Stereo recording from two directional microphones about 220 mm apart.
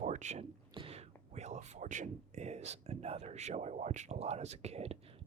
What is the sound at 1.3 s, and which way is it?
Speech, 30° right (ahead or behind).